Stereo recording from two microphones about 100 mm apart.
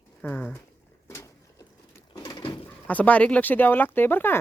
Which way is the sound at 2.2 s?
40° left (ahead or behind).